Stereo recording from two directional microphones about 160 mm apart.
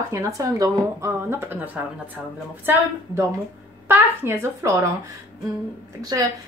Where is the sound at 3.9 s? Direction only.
15° right (ahead or behind).